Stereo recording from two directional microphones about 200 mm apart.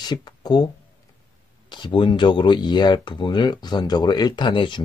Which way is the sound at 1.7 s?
25° left (ahead or behind).